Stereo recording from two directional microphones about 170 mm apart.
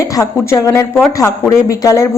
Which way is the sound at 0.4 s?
15° left (ahead or behind).